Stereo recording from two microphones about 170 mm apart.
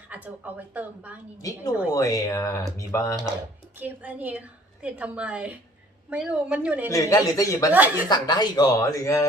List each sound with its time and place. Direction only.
0.1 s a woman's voice: 10° right (ahead or behind)
1.4 s speech: 20° left (ahead or behind)
3.8 s a woman's voice: 10° right (ahead or behind)
6.9 s speech: 20° left (ahead or behind)
7.7 s a woman's voice: 10° right (ahead or behind)
8.1 s speech: 25° left (ahead or behind)